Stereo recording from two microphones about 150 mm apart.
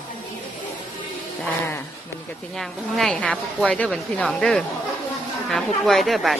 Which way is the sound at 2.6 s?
Centre (ahead or behind).